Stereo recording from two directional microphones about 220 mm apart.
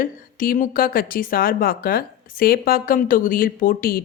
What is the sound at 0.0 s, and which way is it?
A woman's voice, 40° left (ahead or behind).